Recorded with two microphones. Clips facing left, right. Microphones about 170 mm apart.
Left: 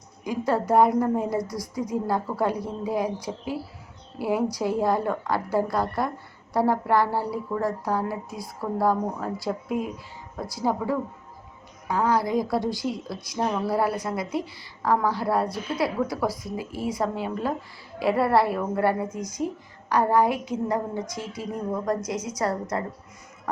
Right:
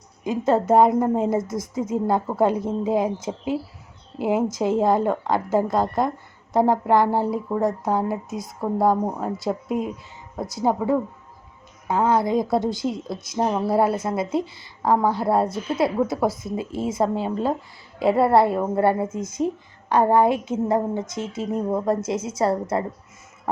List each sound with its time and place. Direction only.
0.3 s a woman's voice: 25° right (ahead or behind)